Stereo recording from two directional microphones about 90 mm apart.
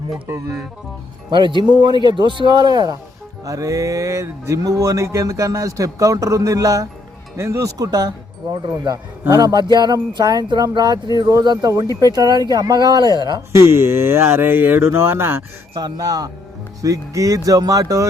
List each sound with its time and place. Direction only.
1.3 s speech: 60° right (ahead or behind)
3.4 s a sound: 40° right (ahead or behind)
7.3 s speech: 30° right (ahead or behind)
7.8 s speech: 45° right (ahead or behind)
8.5 s speech: 55° right (ahead or behind)
13.5 s speech: 30° right (ahead or behind)
15.7 s speech: 45° right (ahead or behind)
16.8 s a sound: 40° right (ahead or behind)